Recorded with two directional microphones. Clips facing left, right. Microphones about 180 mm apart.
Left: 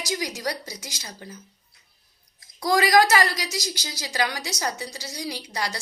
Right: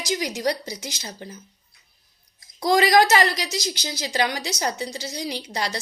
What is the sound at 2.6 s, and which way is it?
A woman's voice, 25° right (ahead or behind).